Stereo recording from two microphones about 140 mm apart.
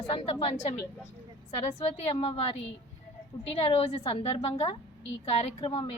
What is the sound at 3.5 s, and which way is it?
Speech, 45° left (ahead or behind).